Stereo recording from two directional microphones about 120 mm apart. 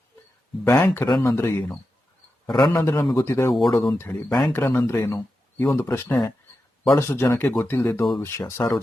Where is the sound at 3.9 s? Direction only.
20° left (ahead or behind).